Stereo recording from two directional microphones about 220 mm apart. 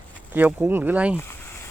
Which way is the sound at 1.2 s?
10° left (ahead or behind).